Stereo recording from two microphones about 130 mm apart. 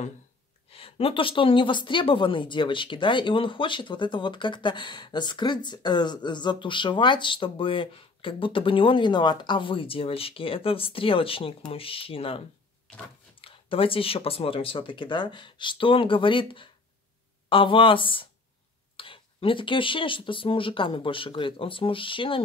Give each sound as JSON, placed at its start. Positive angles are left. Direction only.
{"t": 0.7, "sound": "a woman's voice", "side_deg": 45}